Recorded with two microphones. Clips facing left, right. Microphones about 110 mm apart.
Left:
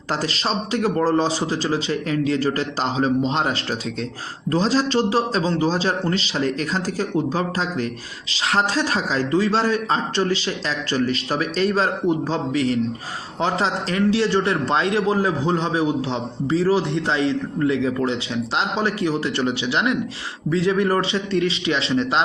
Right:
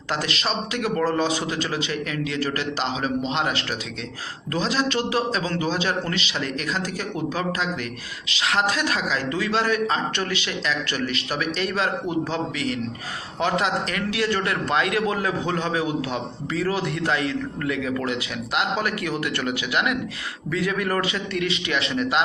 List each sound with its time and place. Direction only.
0.2 s speech: 35° left (ahead or behind)
4.5 s speech: 35° left (ahead or behind)
8.3 s a man's voice: 35° left (ahead or behind)